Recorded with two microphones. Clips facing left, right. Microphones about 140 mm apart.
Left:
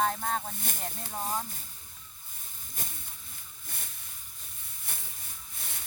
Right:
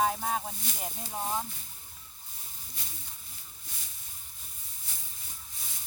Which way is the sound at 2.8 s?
50° left (ahead or behind).